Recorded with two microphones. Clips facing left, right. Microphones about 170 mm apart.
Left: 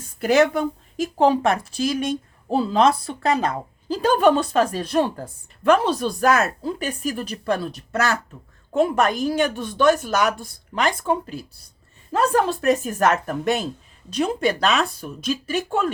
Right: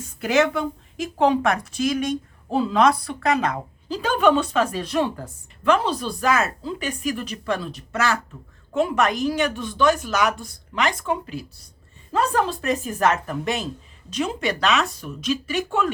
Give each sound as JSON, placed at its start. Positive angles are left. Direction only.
{"t": 0.2, "sound": "a woman's voice", "side_deg": 35}
{"t": 5.7, "sound": "a woman's voice", "side_deg": 50}
{"t": 12.1, "sound": "speech", "side_deg": 45}
{"t": 14.2, "sound": "a woman's voice", "side_deg": 35}